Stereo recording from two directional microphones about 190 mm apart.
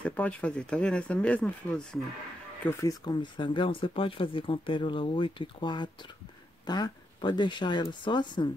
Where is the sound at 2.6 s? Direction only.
15° left (ahead or behind).